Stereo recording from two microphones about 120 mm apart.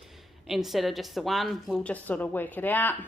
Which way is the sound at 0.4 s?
Centre (ahead or behind).